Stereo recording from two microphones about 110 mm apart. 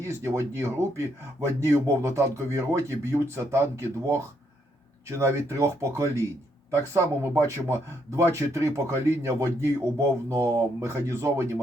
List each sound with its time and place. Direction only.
0.0 s speech: 25° right (ahead or behind)